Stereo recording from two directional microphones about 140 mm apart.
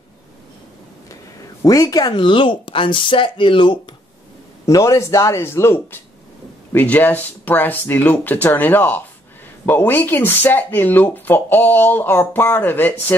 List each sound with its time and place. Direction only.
1.6 s speech: 25° left (ahead or behind)
4.6 s speech: 25° left (ahead or behind)